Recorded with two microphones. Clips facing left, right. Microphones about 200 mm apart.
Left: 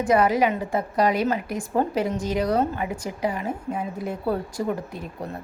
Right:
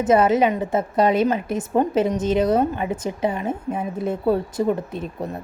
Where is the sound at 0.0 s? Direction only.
25° right (ahead or behind).